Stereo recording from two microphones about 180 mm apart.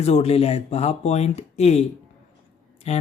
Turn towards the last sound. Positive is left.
turn(degrees=35)  # may be behind; listen again after turning